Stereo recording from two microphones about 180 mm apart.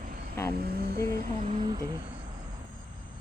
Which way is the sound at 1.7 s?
25° right (ahead or behind).